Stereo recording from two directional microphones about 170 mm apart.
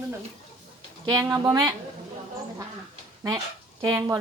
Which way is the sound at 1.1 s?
20° right (ahead or behind).